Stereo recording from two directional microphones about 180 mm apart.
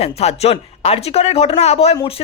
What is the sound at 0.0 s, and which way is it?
Speech, 35° left (ahead or behind).